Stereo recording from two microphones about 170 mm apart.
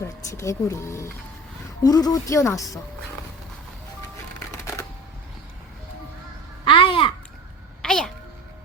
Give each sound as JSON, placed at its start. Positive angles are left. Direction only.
{"t": 0.0, "sound": "speech", "side_deg": 20}
{"t": 4.5, "sound": "typewriter", "side_deg": 15}
{"t": 6.7, "sound": "babbling", "side_deg": 30}
{"t": 7.8, "sound": "a sound", "side_deg": 5}